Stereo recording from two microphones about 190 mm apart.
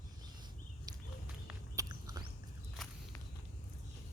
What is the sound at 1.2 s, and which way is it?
Walk, 10° right (ahead or behind).